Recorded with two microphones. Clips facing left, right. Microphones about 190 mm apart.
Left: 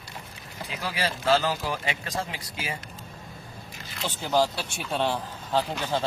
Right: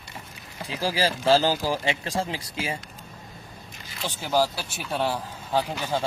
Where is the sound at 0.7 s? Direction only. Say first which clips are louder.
Right 5 dB; 30° right (ahead or behind).